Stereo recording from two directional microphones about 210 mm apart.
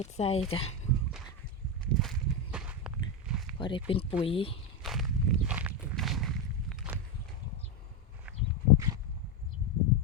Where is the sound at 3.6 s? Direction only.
25° left (ahead or behind).